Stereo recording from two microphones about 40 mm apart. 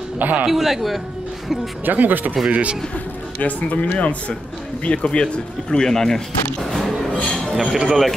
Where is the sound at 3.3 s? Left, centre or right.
Left; by 6.2 s centre.